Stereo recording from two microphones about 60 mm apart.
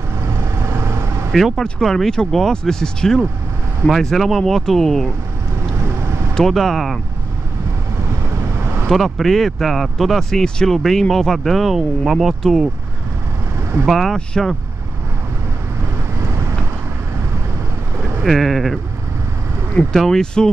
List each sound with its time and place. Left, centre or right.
0.2 s vehicle: right
1.6 s speech: centre
5.8 s vehicle: right
6.3 s speech: centre
8.5 s vehicle: right
8.8 s speech: centre
13.8 s speech: centre
18.2 s speech: centre
19.9 s speech: centre